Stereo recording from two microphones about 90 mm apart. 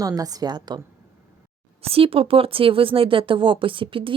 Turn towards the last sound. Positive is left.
turn(degrees=-70)  # may be behind; listen again after turning